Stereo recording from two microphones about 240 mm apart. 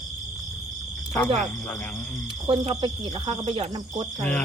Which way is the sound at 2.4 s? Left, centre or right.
Centre.